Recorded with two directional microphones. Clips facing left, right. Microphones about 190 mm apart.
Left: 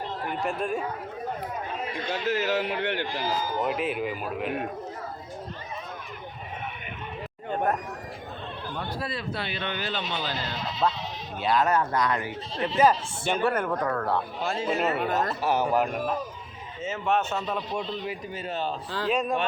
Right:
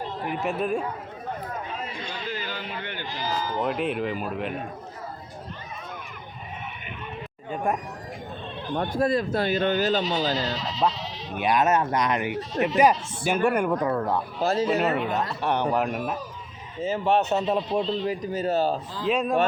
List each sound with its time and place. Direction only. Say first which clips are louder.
0.4 s speech: right 3 dB; centre (ahead or behind)
2.2 s a man's voice: left 10 dB; 85° left
3.6 s speech: right 3 dB; centre (ahead or behind)
7.5 s speech: even; 10° right (ahead or behind)
8.7 s speech: right 11 dB; 50° right (ahead or behind)
10.8 s speech: right 1 dB; 15° right (ahead or behind)
14.4 s speech: right 6 dB; 40° right (ahead or behind)
15.1 s speech: even; centre (ahead or behind)
16.8 s speech: right 4 dB; 35° right (ahead or behind)
19.0 s speech: right 2 dB; centre (ahead or behind)